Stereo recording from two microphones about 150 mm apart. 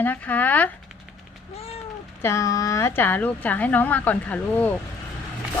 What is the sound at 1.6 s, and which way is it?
Cat, 40° left (ahead or behind).